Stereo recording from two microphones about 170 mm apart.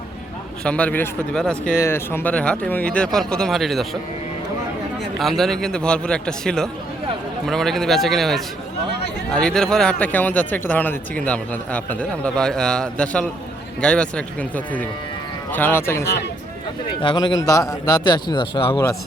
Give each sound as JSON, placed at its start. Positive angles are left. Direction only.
{"t": 0.6, "sound": "a man's voice", "side_deg": 5}
{"t": 5.2, "sound": "a man's voice", "side_deg": 0}
{"t": 17.0, "sound": "speech", "side_deg": 25}